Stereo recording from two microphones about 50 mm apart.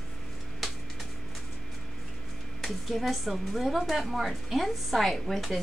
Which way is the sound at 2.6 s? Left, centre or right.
Centre.